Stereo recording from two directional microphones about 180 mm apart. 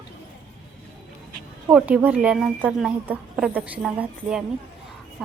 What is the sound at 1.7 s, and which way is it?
A woman's voice, 10° right (ahead or behind).